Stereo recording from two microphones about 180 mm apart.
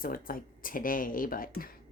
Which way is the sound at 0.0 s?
50° left (ahead or behind).